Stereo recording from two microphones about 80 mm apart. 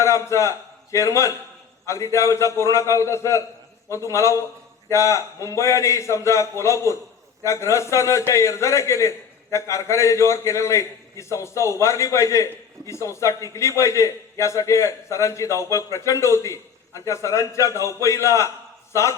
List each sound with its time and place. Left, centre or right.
0.0 s a man's voice: left